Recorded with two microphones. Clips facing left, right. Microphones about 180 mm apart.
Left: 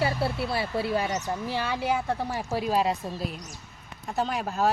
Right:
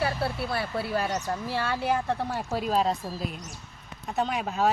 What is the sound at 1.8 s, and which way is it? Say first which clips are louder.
Speech: even; 10° left (ahead or behind).